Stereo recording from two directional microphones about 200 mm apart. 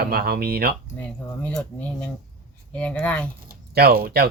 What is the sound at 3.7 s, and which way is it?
Speech, 50° right (ahead or behind).